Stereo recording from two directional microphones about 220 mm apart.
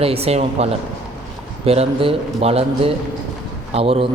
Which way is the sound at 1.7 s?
25° right (ahead or behind).